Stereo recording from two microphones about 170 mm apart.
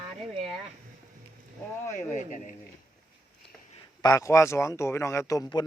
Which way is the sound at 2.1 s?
45° left (ahead or behind).